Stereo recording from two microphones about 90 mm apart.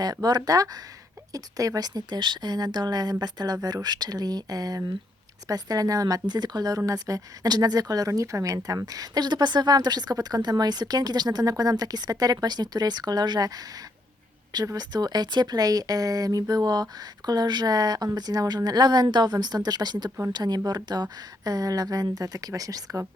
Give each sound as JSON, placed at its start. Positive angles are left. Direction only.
{"t": 0.0, "sound": "speech", "side_deg": -50}
{"t": 20.1, "sound": "speech", "side_deg": -25}
{"t": 20.3, "sound": "speech", "side_deg": -50}